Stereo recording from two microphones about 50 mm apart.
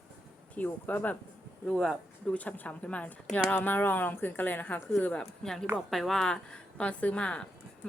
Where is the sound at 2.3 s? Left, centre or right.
Left.